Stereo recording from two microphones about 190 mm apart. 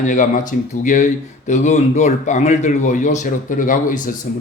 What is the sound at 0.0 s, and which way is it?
Speech, 40° left (ahead or behind).